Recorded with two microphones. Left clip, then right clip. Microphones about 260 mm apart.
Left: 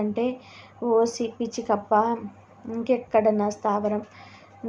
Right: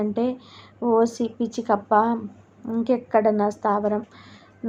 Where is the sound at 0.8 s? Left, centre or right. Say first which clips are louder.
Right 1 dB; centre.